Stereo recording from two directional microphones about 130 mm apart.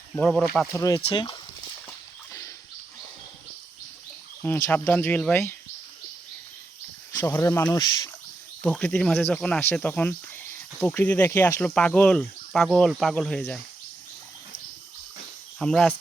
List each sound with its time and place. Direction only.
0.3 s speech: 5° left (ahead or behind)
0.7 s speech: 25° left (ahead or behind)
1.0 s speech: 40° left (ahead or behind)
4.4 s speech: 20° left (ahead or behind)
7.3 s speech: 20° left (ahead or behind)
7.8 s speech: 30° left (ahead or behind)
8.6 s speech: 5° left (ahead or behind)
11.6 s speech: 10° left (ahead or behind)
15.5 s speech: 5° left (ahead or behind)